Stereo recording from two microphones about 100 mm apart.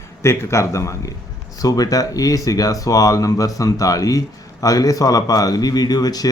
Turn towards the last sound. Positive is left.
turn(degrees=40)  # may be behind; listen again after turning